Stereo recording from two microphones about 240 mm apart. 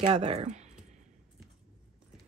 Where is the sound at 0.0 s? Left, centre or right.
Right.